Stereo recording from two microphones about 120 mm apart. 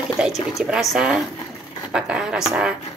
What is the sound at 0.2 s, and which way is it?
Speech, 5° right (ahead or behind).